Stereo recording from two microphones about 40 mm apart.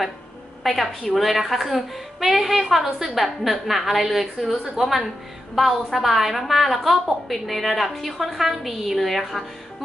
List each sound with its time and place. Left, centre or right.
0.6 s a woman's voice: centre